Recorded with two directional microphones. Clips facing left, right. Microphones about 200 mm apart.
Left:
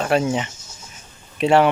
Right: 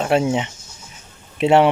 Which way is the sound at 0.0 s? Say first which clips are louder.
Right 2 dB; 20° right (ahead or behind).